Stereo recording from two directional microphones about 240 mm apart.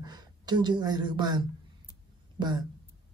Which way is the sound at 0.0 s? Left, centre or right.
Centre.